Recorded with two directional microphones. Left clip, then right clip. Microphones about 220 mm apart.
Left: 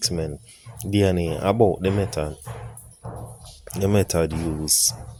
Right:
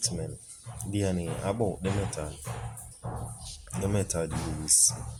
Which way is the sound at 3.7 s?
40° left (ahead or behind).